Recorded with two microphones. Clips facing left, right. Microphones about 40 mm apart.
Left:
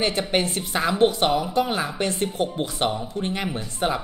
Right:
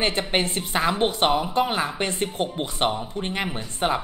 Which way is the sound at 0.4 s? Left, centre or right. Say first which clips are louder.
Left 1 dB; right.